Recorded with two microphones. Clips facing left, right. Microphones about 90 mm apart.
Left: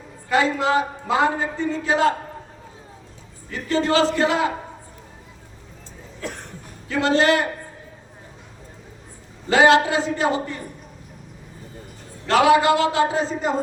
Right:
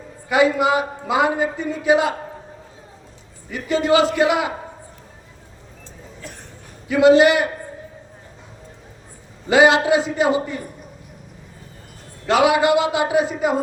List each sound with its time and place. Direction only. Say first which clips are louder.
0.3 s a man's voice: right 3 dB; 15° right (ahead or behind)
3.5 s a man's voice: right 3 dB; 15° right (ahead or behind)
6.2 s a sound: left 8 dB; 90° left
6.8 s a man's voice: right 6 dB; 15° right (ahead or behind)
9.5 s a man's voice: right 1 dB; 15° right (ahead or behind)
12.3 s a man's voice: even; 20° right (ahead or behind)